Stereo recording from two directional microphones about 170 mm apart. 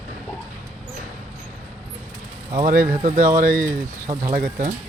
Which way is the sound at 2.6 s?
55° right (ahead or behind).